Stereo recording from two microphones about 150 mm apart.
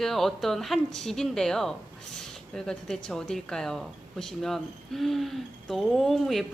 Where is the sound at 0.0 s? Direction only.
Centre (ahead or behind).